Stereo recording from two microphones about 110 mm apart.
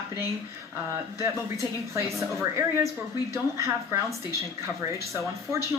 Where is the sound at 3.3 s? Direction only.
25° right (ahead or behind).